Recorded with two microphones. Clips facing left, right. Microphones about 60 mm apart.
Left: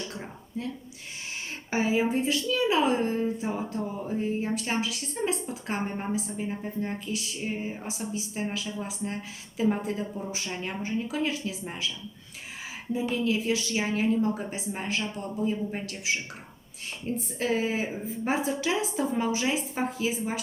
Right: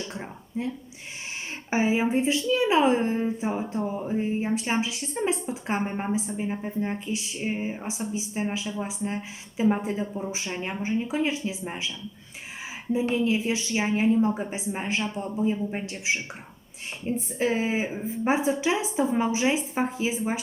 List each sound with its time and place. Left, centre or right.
0.1 s speech: right
1.7 s a woman's voice: right
12.9 s a woman's voice: right